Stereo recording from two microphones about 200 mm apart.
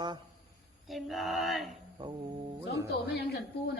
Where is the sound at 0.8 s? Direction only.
Centre (ahead or behind).